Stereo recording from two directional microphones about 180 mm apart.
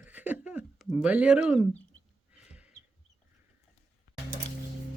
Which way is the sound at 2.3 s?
5° right (ahead or behind).